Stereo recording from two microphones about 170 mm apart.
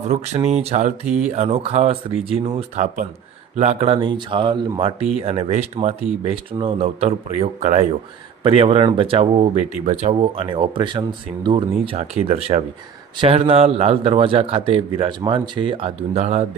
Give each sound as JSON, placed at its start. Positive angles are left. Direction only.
{"t": 0.0, "sound": "speech", "side_deg": -40}
{"t": 1.0, "sound": "speech", "side_deg": -5}
{"t": 1.3, "sound": "speech", "side_deg": -35}